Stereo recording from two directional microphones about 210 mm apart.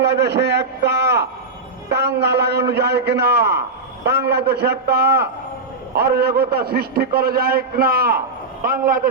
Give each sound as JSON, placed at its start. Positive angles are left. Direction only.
{"t": 0.0, "sound": "a man's voice", "side_deg": -50}